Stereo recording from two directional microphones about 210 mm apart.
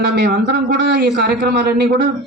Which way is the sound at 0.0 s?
55° right (ahead or behind).